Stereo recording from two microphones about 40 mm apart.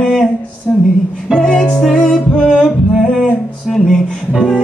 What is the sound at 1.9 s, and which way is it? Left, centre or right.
Music, centre.